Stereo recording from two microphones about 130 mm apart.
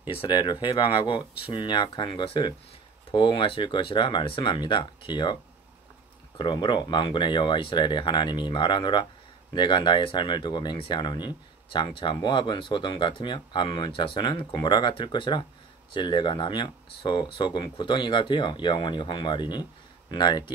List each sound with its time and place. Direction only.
0.1 s speech: 40° left (ahead or behind)